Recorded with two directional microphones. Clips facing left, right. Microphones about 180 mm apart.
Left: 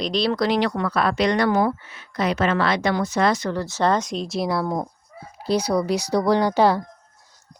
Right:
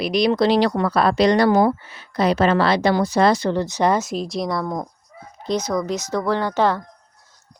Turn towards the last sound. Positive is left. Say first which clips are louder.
# left 2 dB
turn(degrees=10)  # may be behind; listen again after turning